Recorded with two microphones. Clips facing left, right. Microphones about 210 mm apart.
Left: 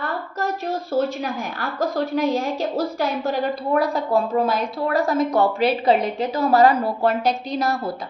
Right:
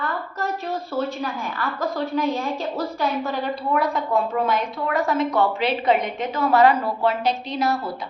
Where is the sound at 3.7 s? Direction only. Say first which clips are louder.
Left 2 dB; 35° left (ahead or behind).